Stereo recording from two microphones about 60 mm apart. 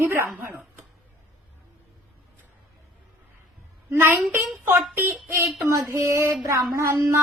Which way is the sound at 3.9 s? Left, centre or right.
Right.